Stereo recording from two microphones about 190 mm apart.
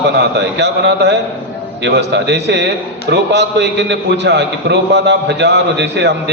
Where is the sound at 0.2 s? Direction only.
60° right (ahead or behind).